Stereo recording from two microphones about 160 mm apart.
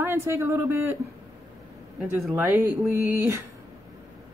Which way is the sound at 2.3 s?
15° right (ahead or behind).